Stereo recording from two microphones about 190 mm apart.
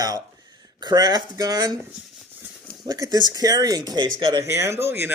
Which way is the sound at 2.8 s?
20° right (ahead or behind).